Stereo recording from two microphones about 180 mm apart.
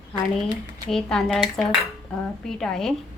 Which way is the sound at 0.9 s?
5° left (ahead or behind).